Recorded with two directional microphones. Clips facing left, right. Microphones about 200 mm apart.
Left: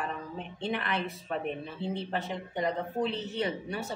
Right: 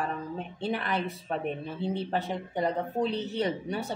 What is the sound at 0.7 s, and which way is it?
Speech, 40° right (ahead or behind).